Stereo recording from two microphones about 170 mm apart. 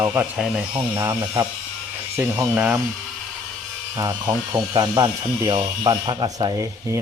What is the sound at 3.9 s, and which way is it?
Speech, 20° right (ahead or behind).